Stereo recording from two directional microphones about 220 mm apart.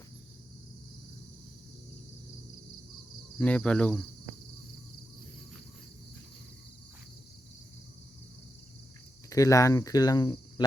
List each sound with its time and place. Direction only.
3.3 s cricket: 5° left (ahead or behind)
9.3 s speech: 15° left (ahead or behind)